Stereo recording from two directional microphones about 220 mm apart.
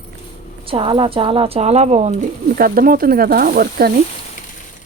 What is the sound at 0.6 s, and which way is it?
Speech, 25° right (ahead or behind).